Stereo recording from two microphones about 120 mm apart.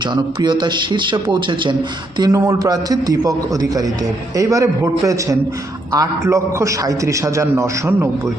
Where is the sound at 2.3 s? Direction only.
25° right (ahead or behind).